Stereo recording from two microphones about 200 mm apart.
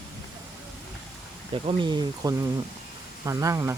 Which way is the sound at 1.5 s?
25° right (ahead or behind).